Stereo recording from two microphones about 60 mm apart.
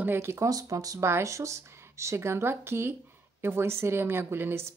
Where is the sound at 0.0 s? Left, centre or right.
Right.